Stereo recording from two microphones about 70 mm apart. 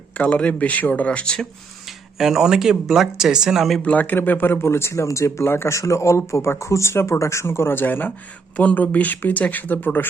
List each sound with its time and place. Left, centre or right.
0.2 s speech: centre
2.1 s speech: centre
3.8 s speech: left